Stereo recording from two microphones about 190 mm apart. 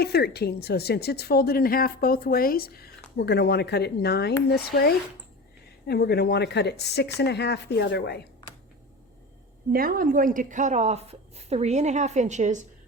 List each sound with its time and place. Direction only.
0.0 s speech: 55° left (ahead or behind)
9.7 s a woman's voice: 50° right (ahead or behind)